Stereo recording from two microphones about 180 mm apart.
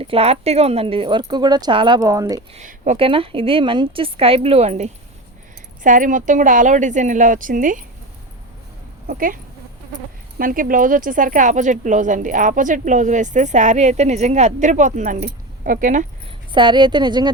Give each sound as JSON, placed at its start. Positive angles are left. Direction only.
{"t": 0.0, "sound": "speech", "side_deg": -35}
{"t": 2.6, "sound": "a woman's voice", "side_deg": -40}
{"t": 9.0, "sound": "speech", "side_deg": -50}
{"t": 15.2, "sound": "speech", "side_deg": -60}
{"t": 16.5, "sound": "speech", "side_deg": -25}